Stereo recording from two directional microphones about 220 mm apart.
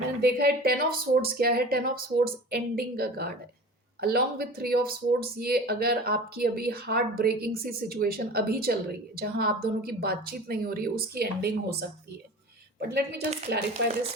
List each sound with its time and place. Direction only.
0.2 s speech: 45° right (ahead or behind)
12.9 s speech: 45° right (ahead or behind)